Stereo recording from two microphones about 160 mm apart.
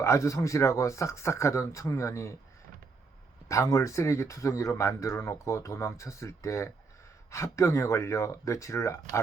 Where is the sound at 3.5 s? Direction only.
20° left (ahead or behind).